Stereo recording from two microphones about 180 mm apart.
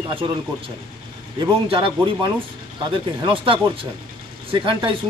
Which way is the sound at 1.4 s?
30° right (ahead or behind).